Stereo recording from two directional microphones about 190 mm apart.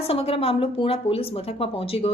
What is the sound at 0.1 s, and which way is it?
A woman's voice, 30° left (ahead or behind).